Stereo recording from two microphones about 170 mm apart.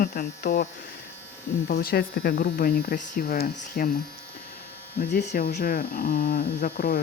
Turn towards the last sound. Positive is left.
turn(degrees=60)  # may be behind; listen again after turning